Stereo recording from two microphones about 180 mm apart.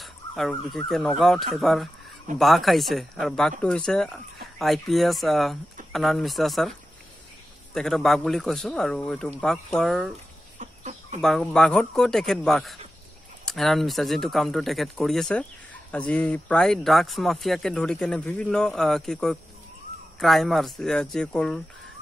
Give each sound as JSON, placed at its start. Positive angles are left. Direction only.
{"t": 0.0, "sound": "speech", "side_deg": 0}
{"t": 7.7, "sound": "speech", "side_deg": 0}
{"t": 10.6, "sound": "chicken", "side_deg": -40}
{"t": 11.1, "sound": "speech", "side_deg": 0}